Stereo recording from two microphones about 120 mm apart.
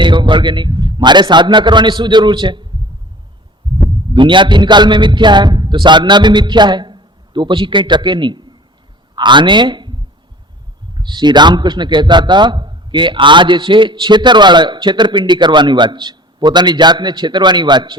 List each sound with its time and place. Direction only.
0.0 s a man's voice: 40° right (ahead or behind)
4.1 s a man's voice: 40° right (ahead or behind)
10.9 s a man's voice: 40° right (ahead or behind)